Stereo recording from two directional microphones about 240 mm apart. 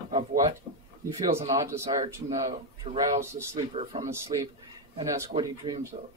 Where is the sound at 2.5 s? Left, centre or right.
Right.